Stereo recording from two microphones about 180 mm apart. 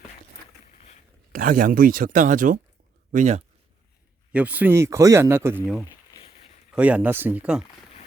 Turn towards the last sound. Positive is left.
turn(degrees=-5)  # may be behind; listen again after turning